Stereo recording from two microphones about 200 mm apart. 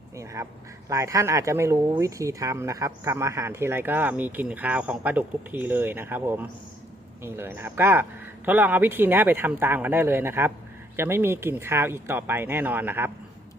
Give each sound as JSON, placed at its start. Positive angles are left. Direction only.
{"t": 0.4, "sound": "speech", "side_deg": -15}